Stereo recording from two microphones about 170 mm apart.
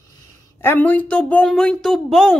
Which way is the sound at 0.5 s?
10° left (ahead or behind).